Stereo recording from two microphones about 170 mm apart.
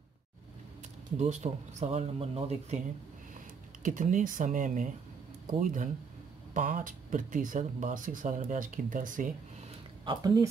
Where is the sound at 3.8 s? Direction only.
50° right (ahead or behind).